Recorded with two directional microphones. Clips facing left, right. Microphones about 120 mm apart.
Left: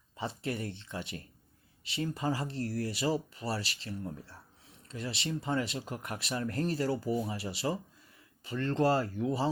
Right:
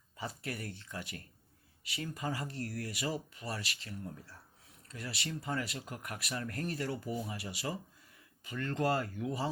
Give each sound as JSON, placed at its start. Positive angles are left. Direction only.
{"t": 0.2, "sound": "speech", "side_deg": 25}